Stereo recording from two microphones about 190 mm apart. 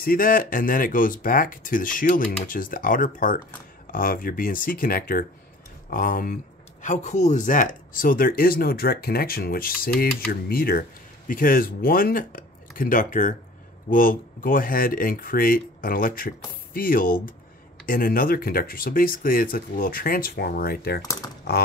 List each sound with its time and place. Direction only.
0.0 s speech: 50° left (ahead or behind)
21.0 s speech: 20° left (ahead or behind)